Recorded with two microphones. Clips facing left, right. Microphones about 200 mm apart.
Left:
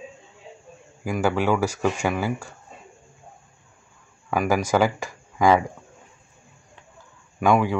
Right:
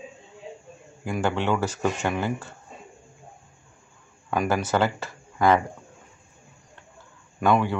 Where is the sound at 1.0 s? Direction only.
5° left (ahead or behind).